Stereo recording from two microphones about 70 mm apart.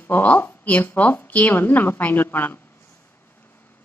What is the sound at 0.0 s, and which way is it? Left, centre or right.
A woman's voice, left.